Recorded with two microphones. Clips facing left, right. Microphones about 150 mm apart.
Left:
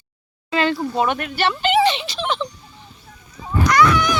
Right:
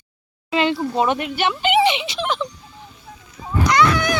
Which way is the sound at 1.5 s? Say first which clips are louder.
Even; 10° right (ahead or behind).